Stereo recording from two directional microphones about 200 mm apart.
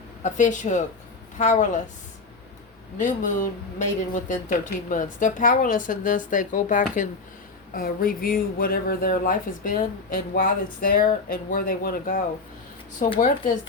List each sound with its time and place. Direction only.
0.2 s speech: 40° left (ahead or behind)
3.0 s speech: 40° left (ahead or behind)